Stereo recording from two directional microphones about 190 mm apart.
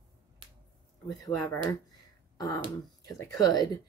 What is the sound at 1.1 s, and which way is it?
Speech, 20° left (ahead or behind).